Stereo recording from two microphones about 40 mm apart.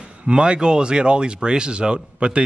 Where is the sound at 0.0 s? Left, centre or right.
Right.